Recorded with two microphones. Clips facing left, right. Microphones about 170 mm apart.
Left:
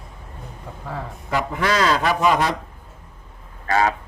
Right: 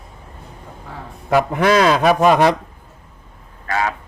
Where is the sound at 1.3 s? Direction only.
65° right (ahead or behind).